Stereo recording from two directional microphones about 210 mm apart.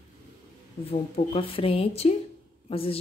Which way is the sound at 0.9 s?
25° left (ahead or behind).